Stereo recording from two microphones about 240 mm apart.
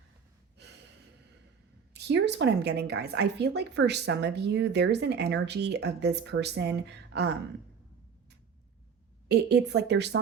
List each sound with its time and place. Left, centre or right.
0.6 s gasp: right
1.9 s a woman's voice: right
9.3 s a woman's voice: right